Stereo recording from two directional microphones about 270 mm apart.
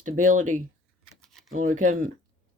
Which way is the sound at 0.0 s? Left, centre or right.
Right.